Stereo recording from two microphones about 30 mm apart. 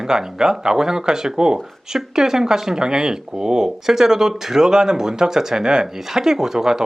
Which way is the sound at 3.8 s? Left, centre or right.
Centre.